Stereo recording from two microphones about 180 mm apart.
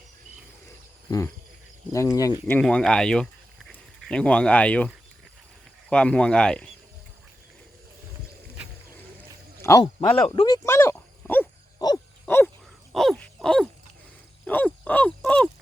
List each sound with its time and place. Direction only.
1.9 s speech: 15° left (ahead or behind)
2.5 s speech: 5° left (ahead or behind)
5.9 s speech: 5° left (ahead or behind)
9.6 s a sound: 15° left (ahead or behind)
9.8 s speech: 30° left (ahead or behind)
10.4 s a sound: 20° left (ahead or behind)
11.8 s owl: 20° left (ahead or behind)
12.2 s a sound: 10° left (ahead or behind)
14.4 s grunt: 10° left (ahead or behind)